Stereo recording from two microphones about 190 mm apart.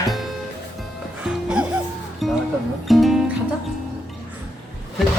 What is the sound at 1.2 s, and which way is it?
Music, 5° right (ahead or behind).